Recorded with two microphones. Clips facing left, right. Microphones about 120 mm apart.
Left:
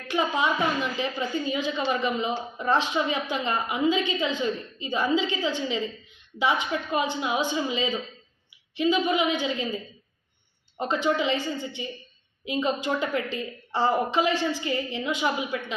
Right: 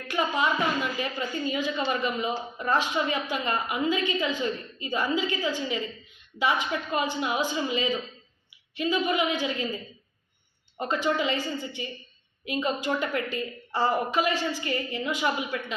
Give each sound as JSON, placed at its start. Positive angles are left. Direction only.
{"t": 0.1, "sound": "a woman's voice", "side_deg": 20}